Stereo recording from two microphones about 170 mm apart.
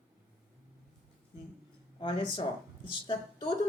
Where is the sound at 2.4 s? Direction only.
30° left (ahead or behind).